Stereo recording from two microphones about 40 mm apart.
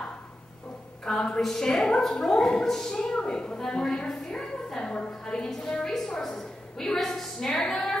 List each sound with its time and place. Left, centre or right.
1.0 s a woman's voice: centre